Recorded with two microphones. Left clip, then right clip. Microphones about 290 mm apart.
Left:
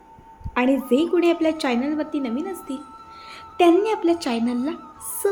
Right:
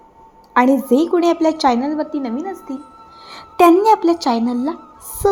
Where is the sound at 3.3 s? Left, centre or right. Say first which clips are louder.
Right 6 dB; right.